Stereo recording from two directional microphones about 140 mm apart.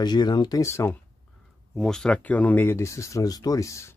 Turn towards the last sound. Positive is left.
turn(degrees=20)  # may be behind; listen again after turning